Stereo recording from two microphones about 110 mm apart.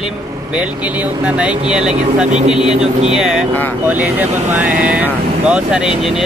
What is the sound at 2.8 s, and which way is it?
Speech, 80° right.